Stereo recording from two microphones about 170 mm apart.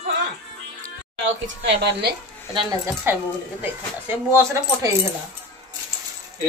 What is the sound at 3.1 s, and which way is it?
Speech, 15° right (ahead or behind).